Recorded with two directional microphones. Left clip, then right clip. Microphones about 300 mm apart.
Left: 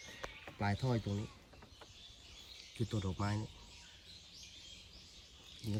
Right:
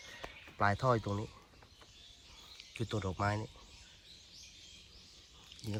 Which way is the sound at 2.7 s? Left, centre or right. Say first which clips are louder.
Right 4 dB; centre.